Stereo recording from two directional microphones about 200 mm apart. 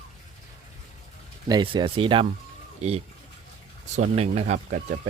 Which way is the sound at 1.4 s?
25° right (ahead or behind).